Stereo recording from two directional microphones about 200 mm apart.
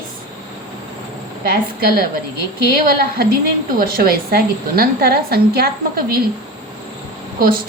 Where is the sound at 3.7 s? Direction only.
45° right (ahead or behind).